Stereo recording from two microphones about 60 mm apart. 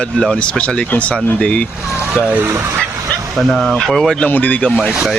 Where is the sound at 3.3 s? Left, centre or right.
Centre.